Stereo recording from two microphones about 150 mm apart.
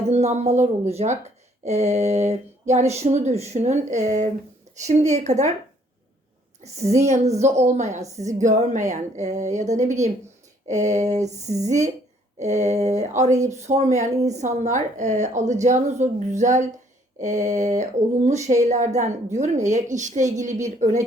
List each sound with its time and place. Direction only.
0.1 s speech: 45° right (ahead or behind)
6.6 s a woman's voice: 45° right (ahead or behind)